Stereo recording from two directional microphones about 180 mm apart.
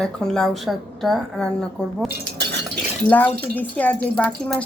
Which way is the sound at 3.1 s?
10° left (ahead or behind).